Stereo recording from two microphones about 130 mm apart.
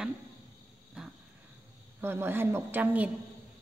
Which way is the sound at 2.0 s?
15° right (ahead or behind).